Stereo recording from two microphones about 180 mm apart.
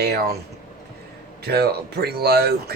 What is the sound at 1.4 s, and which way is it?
Speech, 60° right (ahead or behind).